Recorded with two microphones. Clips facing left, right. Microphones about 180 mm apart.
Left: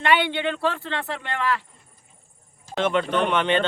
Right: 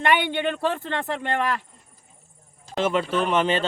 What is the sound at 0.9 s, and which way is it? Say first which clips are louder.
Speech: right 3 dB; 45° right (ahead or behind).